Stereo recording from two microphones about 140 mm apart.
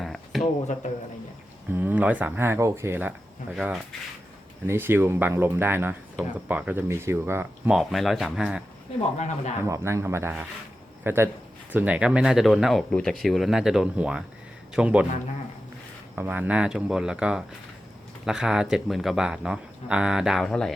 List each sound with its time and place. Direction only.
0.0 s a sound: centre (ahead or behind)
1.7 s speech: 10° right (ahead or behind)
3.5 s speech: centre (ahead or behind)
4.6 s speech: 15° right (ahead or behind)
7.7 s speech: centre (ahead or behind)
9.1 s speech: 50° left (ahead or behind)
9.6 s a man's voice: 20° right (ahead or behind)
16.1 s speech: 15° right (ahead or behind); by 20.7 s 5° left (ahead or behind)